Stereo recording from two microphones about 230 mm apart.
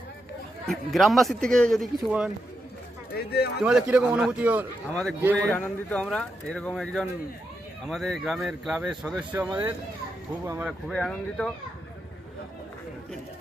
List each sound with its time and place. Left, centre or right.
0.7 s speech: centre
3.3 s speech: left
3.6 s speech: centre
5.5 s speech: centre